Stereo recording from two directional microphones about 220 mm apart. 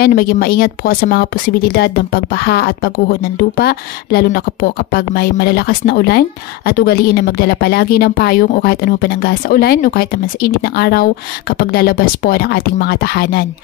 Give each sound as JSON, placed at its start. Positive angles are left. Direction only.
{"t": 0.0, "sound": "speech", "side_deg": 45}